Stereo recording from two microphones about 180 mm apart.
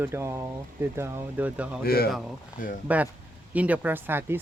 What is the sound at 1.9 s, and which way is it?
Speech, 60° left (ahead or behind).